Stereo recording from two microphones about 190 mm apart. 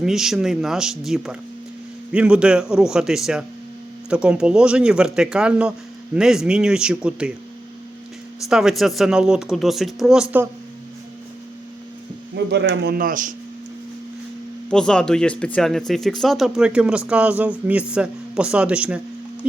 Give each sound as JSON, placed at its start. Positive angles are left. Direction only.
{"t": 0.0, "sound": "speech", "side_deg": 0}
{"t": 8.4, "sound": "speech", "side_deg": -5}
{"t": 12.5, "sound": "speech", "side_deg": -60}
{"t": 14.7, "sound": "speech", "side_deg": 5}